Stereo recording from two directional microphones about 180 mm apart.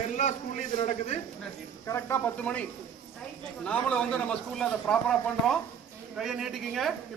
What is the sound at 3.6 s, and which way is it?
Speech, 5° left (ahead or behind).